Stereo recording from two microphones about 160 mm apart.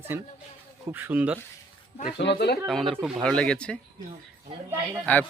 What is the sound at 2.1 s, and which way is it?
Speech, 90° left.